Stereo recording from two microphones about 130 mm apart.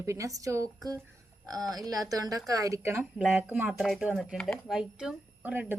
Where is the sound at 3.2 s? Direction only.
10° right (ahead or behind).